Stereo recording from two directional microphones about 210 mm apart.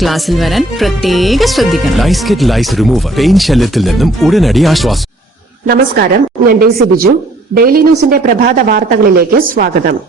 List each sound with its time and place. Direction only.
0.0 s speech: centre (ahead or behind)
5.6 s speech: 45° right (ahead or behind)